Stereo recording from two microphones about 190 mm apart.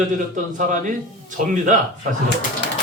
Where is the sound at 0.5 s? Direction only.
45° right (ahead or behind).